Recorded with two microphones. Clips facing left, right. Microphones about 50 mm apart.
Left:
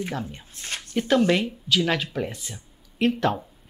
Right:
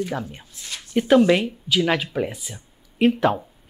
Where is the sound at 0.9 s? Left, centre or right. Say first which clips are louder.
Right 5 dB; centre.